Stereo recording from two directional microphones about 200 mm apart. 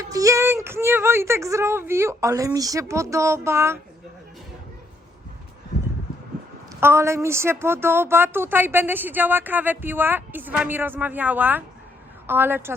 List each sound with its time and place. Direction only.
0.0 s a woman's voice: 15° right (ahead or behind)
6.7 s a woman's voice: 10° right (ahead or behind)